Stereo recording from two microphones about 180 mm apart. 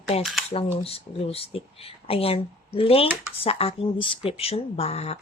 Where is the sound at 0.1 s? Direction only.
35° left (ahead or behind).